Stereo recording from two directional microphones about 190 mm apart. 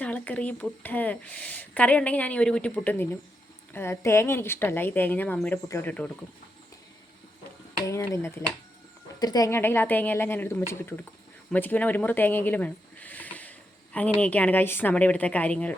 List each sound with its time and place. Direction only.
0.0 s a woman's voice: 10° left (ahead or behind)
7.9 s a woman's voice: 15° left (ahead or behind)